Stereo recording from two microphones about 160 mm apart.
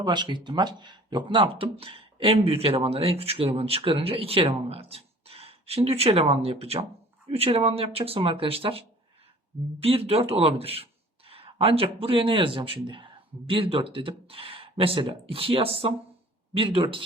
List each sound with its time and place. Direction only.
0.0 s speech: 30° right (ahead or behind)
9.8 s speech: 40° right (ahead or behind)